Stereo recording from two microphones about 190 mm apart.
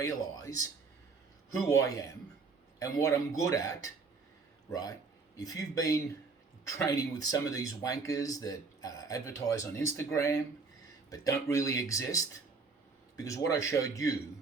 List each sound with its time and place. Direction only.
0.0 s speech: 15° left (ahead or behind)
1.8 s a man's voice: 20° left (ahead or behind)